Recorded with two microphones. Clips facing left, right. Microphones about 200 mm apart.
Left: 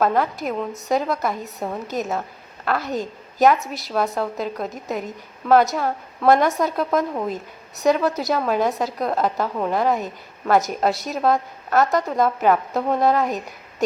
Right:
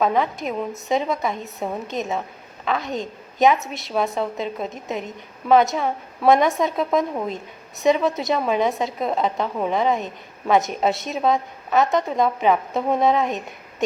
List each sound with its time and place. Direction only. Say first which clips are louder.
0.0 s a woman's voice: left 1 dB; centre (ahead or behind)